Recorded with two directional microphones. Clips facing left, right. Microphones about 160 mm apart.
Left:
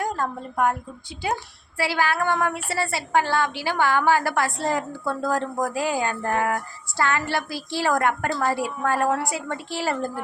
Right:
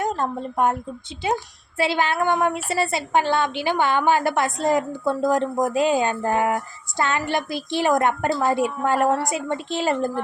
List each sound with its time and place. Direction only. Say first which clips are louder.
0.0 s a woman's voice: right 3 dB; 25° right (ahead or behind)